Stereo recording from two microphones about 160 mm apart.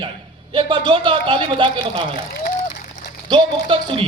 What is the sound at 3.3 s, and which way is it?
Speech, 30° right (ahead or behind).